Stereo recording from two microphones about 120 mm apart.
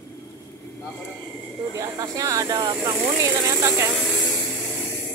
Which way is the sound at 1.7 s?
30° right (ahead or behind).